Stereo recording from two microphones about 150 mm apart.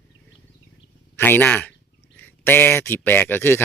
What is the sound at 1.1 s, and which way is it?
A man's voice, 15° left (ahead or behind).